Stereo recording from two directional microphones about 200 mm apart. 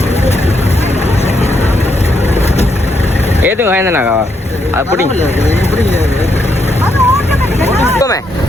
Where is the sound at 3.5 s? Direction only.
10° right (ahead or behind).